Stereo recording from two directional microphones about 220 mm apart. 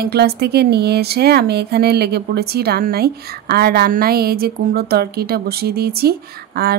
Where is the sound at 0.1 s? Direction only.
45° right (ahead or behind).